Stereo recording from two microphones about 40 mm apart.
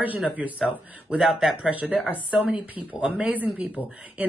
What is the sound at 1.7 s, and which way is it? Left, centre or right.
Speech, right.